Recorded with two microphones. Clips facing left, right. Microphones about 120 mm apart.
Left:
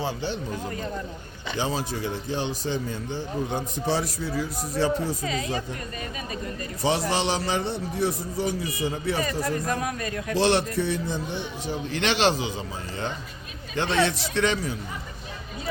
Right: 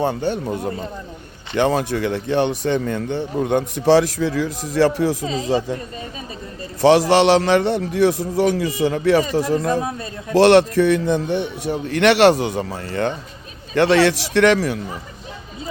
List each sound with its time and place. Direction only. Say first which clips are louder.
0.0 s a man's voice: right 8 dB; 55° right (ahead or behind); by 5.1 s 90° right
5.2 s a man's voice: right 5 dB; 30° right (ahead or behind)
6.8 s a man's voice: right 12 dB; 85° right
9.6 s a man's voice: right 6 dB; 30° right (ahead or behind)
10.3 s a man's voice: right 11 dB; 75° right (ahead or behind)